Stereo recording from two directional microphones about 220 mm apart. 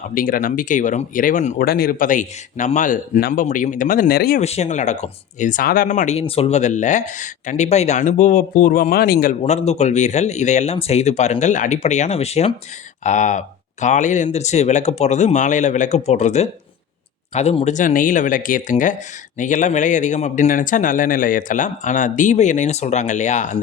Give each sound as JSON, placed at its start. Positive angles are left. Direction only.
{"t": 0.1, "sound": "speech", "side_deg": 40}
{"t": 4.4, "sound": "speech", "side_deg": 30}
{"t": 9.4, "sound": "speech", "side_deg": 30}